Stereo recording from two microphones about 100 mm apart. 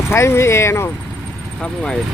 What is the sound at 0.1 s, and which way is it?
Speech, 25° left (ahead or behind).